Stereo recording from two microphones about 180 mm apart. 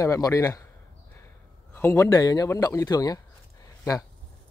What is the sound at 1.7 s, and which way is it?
A man's voice, 10° left (ahead or behind).